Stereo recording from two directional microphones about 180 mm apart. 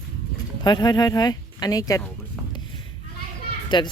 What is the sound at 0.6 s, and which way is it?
Speech, 25° left (ahead or behind).